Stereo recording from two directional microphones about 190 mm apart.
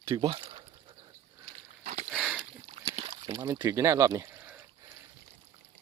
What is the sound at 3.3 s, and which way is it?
Speech, 20° right (ahead or behind).